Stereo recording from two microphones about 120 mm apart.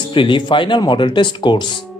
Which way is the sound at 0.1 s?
45° left (ahead or behind).